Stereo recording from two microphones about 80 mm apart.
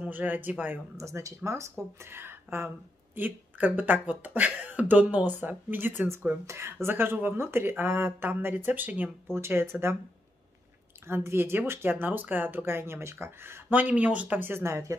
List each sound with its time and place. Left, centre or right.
0.0 s speech: right
0.9 s speech: right
11.1 s speech: right
13.7 s speech: centre; by 15.0 s right